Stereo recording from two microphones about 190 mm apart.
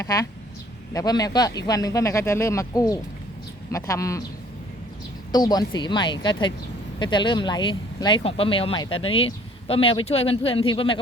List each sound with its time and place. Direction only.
0.0 s speech: 20° left (ahead or behind)
5.3 s speech: 20° left (ahead or behind)